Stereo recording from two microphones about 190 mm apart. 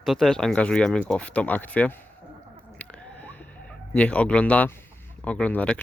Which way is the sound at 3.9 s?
5° left (ahead or behind).